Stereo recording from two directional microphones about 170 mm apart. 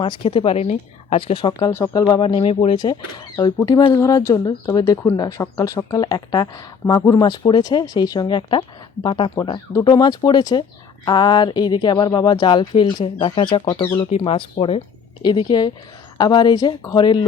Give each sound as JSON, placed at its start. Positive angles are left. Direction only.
{"t": 0.0, "sound": "speech", "side_deg": 30}
{"t": 9.3, "sound": "speech", "side_deg": 20}